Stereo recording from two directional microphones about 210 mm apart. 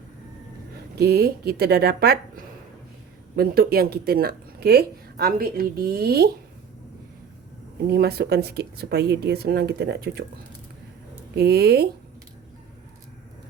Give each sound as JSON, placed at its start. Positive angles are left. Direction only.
{"t": 0.9, "sound": "speech", "side_deg": -50}
{"t": 7.9, "sound": "speech", "side_deg": -50}
{"t": 11.3, "sound": "speech", "side_deg": -50}